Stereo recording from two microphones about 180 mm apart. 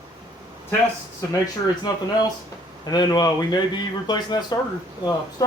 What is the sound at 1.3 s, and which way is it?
Speech, 25° left (ahead or behind).